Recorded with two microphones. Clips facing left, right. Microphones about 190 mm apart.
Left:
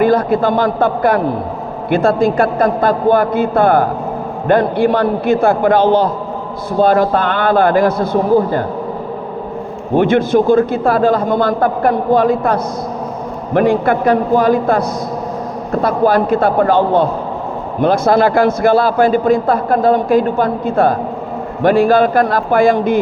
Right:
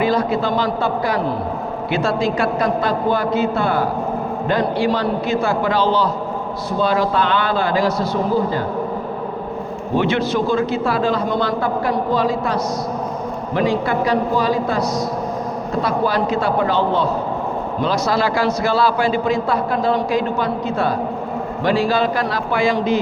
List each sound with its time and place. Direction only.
0.0 s a man's voice: 55° left (ahead or behind)
9.9 s a man's voice: 50° left (ahead or behind)